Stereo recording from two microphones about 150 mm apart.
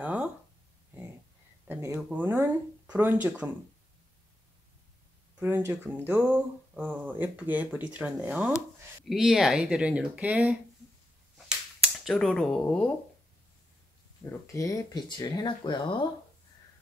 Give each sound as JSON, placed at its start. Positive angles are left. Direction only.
{"t": 0.0, "sound": "a sound", "side_deg": -10}
{"t": 1.7, "sound": "a sound", "side_deg": -20}
{"t": 2.0, "sound": "speech", "side_deg": -10}
{"t": 5.4, "sound": "speech", "side_deg": -15}
{"t": 12.0, "sound": "speech", "side_deg": 5}
{"t": 14.2, "sound": "speech", "side_deg": 20}